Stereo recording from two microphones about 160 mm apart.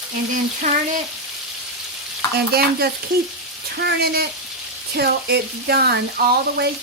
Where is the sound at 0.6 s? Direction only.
50° right (ahead or behind).